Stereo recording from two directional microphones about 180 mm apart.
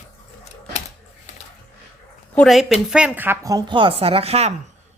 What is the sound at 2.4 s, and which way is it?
A woman's voice, centre (ahead or behind).